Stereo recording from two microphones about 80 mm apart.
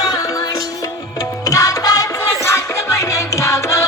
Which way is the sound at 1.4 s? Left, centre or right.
Left.